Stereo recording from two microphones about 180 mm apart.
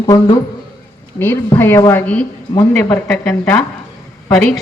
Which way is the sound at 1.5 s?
10° left (ahead or behind).